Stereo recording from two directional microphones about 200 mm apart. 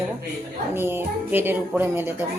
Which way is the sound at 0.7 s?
10° right (ahead or behind).